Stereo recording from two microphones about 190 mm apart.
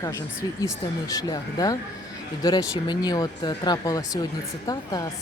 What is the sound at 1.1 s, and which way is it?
Speech, 20° left (ahead or behind).